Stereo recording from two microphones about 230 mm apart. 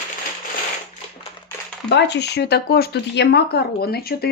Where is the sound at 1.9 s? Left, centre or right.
Left.